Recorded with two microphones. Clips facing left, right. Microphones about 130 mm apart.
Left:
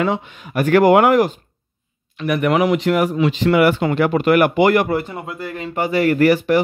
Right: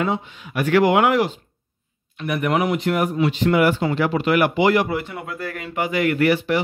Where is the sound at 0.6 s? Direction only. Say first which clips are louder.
Left 4 dB; 45° left (ahead or behind).